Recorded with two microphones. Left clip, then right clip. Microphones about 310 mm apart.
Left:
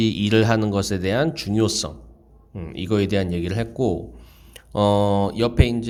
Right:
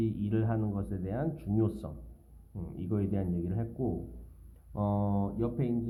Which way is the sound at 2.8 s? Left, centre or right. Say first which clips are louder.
Left 14 dB; left.